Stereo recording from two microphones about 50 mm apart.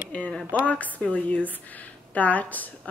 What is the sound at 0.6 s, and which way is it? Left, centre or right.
A woman's voice, left.